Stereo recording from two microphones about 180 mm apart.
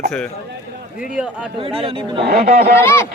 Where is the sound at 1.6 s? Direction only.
30° right (ahead or behind).